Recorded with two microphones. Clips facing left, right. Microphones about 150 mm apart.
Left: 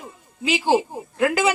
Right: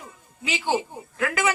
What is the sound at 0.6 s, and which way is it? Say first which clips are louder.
Speech: left 5 dB; 30° left (ahead or behind).